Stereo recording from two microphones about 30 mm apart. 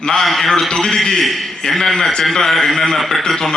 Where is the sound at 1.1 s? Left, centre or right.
Centre.